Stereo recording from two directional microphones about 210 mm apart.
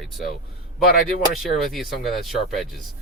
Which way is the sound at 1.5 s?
Centre (ahead or behind).